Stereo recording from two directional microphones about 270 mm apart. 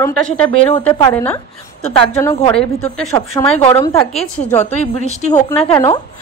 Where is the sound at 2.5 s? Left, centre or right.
Centre.